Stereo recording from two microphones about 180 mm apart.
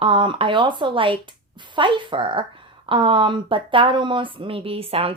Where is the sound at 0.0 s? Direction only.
30° right (ahead or behind).